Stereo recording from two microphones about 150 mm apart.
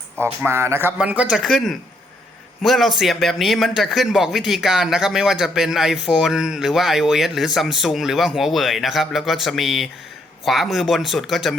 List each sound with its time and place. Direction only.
0.4 s music: 15° right (ahead or behind)
0.9 s a man's voice: 10° right (ahead or behind)